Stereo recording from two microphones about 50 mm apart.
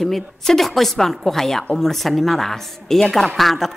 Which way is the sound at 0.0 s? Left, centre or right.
Centre.